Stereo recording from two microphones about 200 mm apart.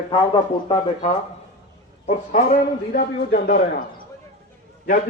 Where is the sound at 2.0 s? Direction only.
40° left (ahead or behind).